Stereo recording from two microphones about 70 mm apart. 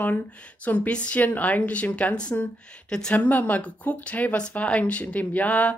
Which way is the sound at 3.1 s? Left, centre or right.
Left.